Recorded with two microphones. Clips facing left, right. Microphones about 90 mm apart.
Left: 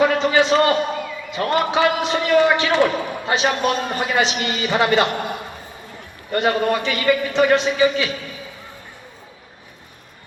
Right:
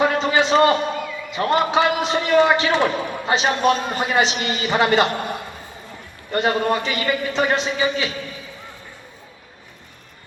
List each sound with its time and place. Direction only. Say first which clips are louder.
0.0 s a sound: left 2 dB; 35° right (ahead or behind)
1.4 s a man's voice: even; 35° right (ahead or behind)
6.3 s a man's voice: left 1 dB; 30° right (ahead or behind)